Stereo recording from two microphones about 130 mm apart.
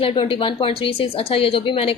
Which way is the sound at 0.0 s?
45° left (ahead or behind).